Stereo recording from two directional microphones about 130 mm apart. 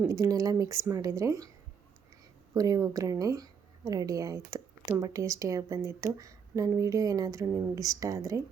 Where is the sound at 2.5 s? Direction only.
25° right (ahead or behind).